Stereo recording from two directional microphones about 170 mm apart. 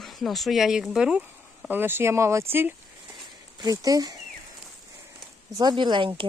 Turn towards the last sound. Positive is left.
turn(degrees=-30)  # may be behind; listen again after turning